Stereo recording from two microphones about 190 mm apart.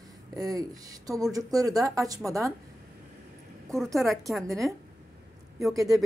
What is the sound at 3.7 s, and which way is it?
Speech, centre (ahead or behind).